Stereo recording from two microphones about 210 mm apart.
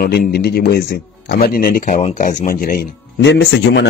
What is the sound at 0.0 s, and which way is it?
Speech, 50° left (ahead or behind).